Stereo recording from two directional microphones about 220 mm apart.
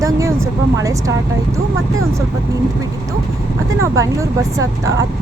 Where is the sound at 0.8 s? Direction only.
15° right (ahead or behind).